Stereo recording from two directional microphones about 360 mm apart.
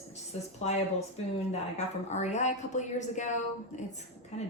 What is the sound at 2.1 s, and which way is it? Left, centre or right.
A woman's voice, centre.